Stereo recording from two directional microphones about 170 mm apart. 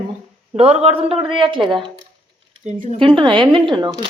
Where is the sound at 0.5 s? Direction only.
40° right (ahead or behind).